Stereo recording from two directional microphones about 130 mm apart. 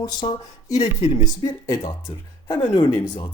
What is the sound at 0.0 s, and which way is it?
Speech, 35° left (ahead or behind).